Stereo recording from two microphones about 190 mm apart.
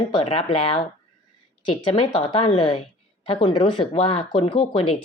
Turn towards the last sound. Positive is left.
turn(degrees=25)  # may be behind; listen again after turning